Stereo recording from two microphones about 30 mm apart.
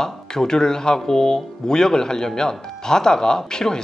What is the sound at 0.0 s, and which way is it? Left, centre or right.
Speech, left.